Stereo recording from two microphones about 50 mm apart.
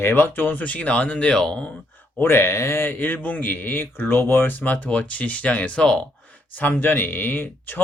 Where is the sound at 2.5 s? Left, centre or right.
Left.